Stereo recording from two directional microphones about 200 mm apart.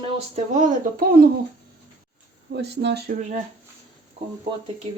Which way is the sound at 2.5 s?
55° right (ahead or behind).